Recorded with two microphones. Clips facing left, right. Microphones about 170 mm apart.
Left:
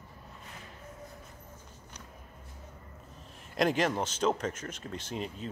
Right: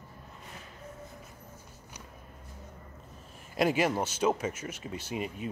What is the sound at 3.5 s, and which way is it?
Speech, 5° right (ahead or behind).